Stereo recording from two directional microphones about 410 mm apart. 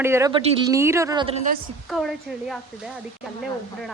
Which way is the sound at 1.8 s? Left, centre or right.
Centre.